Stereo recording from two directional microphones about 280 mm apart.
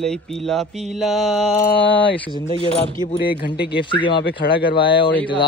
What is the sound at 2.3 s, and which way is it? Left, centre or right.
Speech, left.